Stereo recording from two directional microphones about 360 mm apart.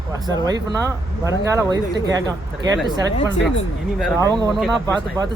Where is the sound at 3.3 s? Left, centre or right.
Left.